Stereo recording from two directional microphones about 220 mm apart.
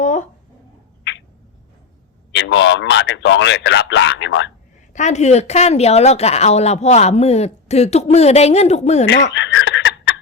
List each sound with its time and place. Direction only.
2.3 s speech: 55° left (ahead or behind)
4.9 s speech: 30° left (ahead or behind)
9.3 s chuckle: 55° left (ahead or behind)